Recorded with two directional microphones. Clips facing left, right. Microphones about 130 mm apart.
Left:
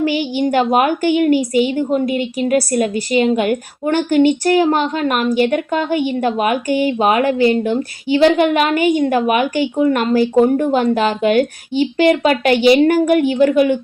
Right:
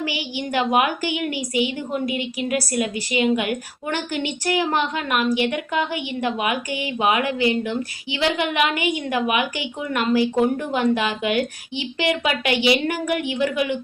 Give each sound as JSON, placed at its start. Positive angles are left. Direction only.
{"t": 0.3, "sound": "a woman's voice", "side_deg": 35}
{"t": 8.0, "sound": "speech", "side_deg": 45}